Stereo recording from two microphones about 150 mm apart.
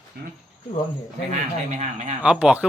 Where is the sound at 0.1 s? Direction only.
80° right.